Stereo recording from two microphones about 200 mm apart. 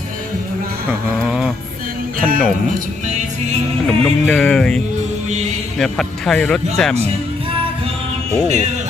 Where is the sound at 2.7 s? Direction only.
40° right (ahead or behind).